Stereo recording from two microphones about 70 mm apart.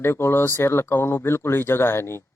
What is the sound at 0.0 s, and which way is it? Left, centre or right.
Speech, left.